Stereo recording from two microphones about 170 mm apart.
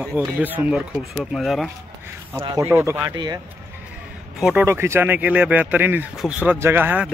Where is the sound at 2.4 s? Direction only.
20° right (ahead or behind).